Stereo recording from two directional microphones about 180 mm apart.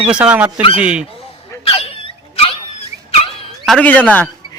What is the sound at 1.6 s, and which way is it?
Dog, 30° left (ahead or behind).